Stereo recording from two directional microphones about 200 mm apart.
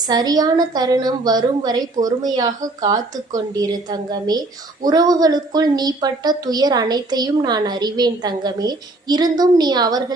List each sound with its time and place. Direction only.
0.1 s a woman's voice: 20° right (ahead or behind)